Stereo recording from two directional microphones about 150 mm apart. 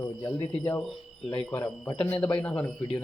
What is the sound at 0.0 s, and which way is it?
A man's voice, 20° left (ahead or behind).